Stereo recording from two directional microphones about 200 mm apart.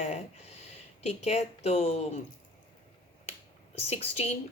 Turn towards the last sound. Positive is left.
turn(degrees=30)  # may be behind; listen again after turning